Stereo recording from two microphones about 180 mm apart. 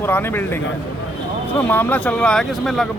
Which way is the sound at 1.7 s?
10° left (ahead or behind).